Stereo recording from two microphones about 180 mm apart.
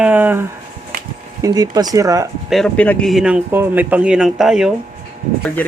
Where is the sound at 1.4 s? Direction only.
20° right (ahead or behind).